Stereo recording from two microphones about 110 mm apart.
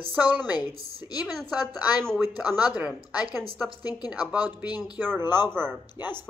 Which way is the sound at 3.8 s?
35° left (ahead or behind).